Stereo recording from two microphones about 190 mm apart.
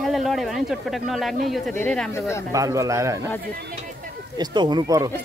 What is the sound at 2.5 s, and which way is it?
Speech, 15° right (ahead or behind).